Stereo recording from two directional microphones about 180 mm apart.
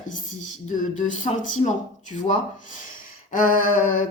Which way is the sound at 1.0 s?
45° left (ahead or behind).